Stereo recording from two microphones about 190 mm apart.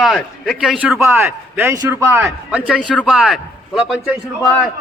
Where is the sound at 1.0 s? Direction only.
15° right (ahead or behind).